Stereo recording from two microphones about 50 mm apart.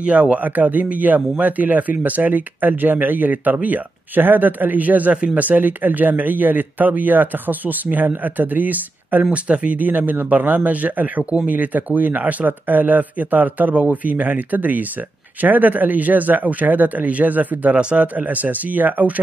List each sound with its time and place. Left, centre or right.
0.0 s speech: right
5.1 s speech: right
5.4 s speech: right
17.7 s speech: right
18.0 s speech: right